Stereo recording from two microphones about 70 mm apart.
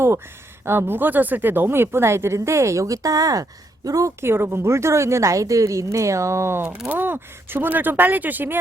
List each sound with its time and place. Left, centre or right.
0.6 s a woman's voice: right
4.2 s a woman's voice: right
6.8 s speech: right